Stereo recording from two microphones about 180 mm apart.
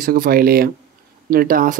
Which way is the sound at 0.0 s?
55° right (ahead or behind).